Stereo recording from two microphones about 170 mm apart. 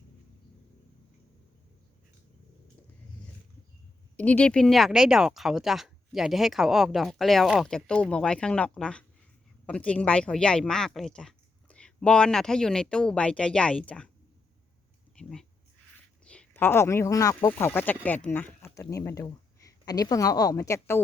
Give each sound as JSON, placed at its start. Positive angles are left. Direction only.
{"t": 4.2, "sound": "speech", "side_deg": 10}
{"t": 15.2, "sound": "speech", "side_deg": 5}